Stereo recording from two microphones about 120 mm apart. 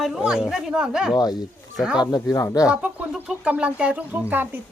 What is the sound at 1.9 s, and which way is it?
Speech, 35° left (ahead or behind).